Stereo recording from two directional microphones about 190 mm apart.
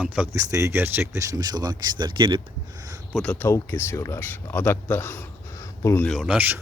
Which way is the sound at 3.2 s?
5° left (ahead or behind).